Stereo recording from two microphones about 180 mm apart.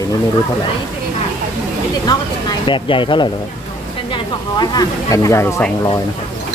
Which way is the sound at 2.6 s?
25° left (ahead or behind).